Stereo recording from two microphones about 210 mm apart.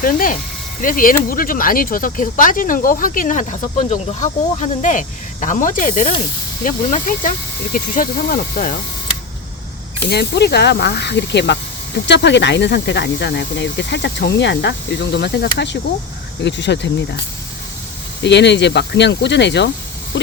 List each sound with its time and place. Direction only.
0.0 s speech: 40° left (ahead or behind)
10.1 s speech: 50° left (ahead or behind)
18.2 s speech: 55° left (ahead or behind)